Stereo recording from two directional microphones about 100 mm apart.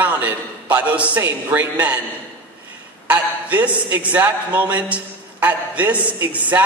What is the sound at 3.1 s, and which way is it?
A man's voice, 15° right (ahead or behind).